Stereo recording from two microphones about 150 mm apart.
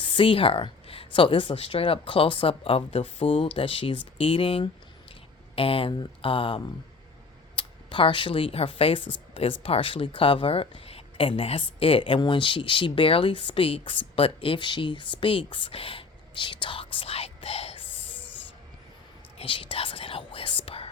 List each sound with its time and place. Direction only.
0.0 s speech: 35° left (ahead or behind)
19.4 s speech: 35° left (ahead or behind)